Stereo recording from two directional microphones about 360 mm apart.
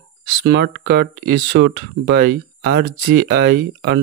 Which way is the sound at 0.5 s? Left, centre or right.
Right.